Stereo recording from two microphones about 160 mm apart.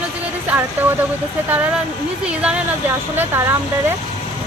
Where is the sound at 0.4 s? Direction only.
10° right (ahead or behind).